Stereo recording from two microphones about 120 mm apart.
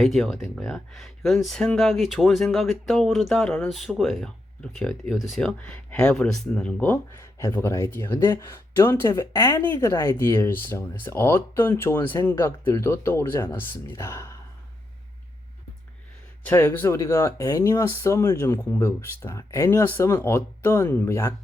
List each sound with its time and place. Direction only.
0.0 s speech: centre (ahead or behind); by 14.3 s 20° left (ahead or behind)
16.5 s speech: 15° left (ahead or behind)